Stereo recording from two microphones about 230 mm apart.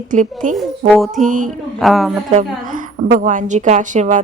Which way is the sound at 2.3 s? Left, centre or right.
Right.